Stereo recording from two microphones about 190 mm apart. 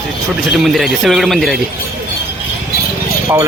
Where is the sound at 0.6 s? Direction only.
Centre (ahead or behind).